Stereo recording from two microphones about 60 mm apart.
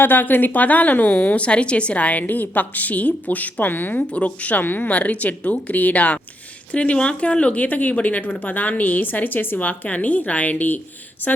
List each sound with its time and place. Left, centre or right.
0.0 s a woman's voice: left
4.0 s a woman's voice: left